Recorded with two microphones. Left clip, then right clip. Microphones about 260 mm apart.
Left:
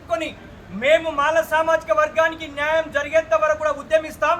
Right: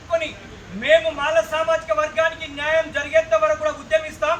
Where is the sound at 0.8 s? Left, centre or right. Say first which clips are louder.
Even; centre.